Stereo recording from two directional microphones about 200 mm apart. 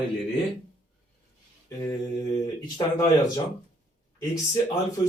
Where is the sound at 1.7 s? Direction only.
15° left (ahead or behind).